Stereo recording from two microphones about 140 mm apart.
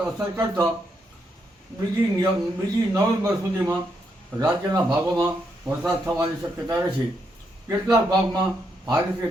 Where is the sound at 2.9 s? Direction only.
20° right (ahead or behind).